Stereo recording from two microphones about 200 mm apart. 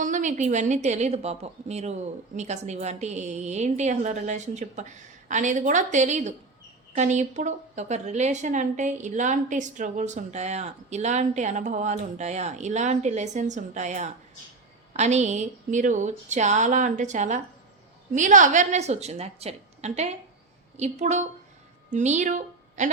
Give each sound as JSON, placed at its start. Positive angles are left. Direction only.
{"t": 0.0, "sound": "a woman's voice", "side_deg": -40}